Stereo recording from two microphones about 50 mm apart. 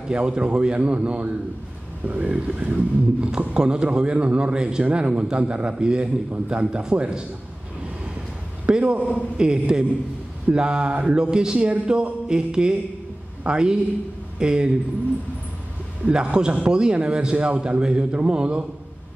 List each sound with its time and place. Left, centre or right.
0.1 s a man's voice: centre
8.6 s a man's voice: centre
11.7 s a sound: centre
16.1 s a man's voice: centre